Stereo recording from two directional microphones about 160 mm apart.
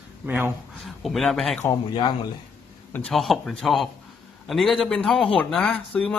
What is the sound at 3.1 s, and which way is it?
A man's voice, centre (ahead or behind).